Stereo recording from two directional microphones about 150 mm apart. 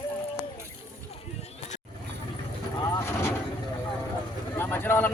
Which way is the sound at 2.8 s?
20° left (ahead or behind).